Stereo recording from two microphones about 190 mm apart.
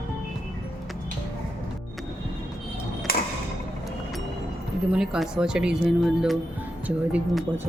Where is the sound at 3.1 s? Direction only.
55° left (ahead or behind).